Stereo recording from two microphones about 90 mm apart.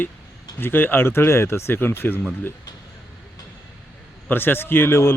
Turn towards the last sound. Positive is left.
turn(degrees=25)  # may be behind; listen again after turning